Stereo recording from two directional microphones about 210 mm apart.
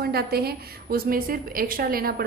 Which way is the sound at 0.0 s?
45° right (ahead or behind).